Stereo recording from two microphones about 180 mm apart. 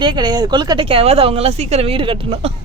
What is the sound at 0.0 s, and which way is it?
A woman's voice, 25° right (ahead or behind).